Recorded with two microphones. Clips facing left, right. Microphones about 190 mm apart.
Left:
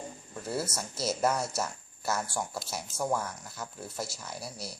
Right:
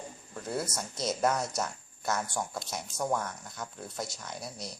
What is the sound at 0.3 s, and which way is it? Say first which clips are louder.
Speech: even; 5° left (ahead or behind).